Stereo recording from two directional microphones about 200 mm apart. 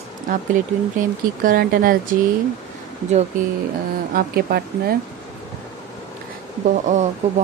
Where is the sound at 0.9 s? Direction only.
45° right (ahead or behind).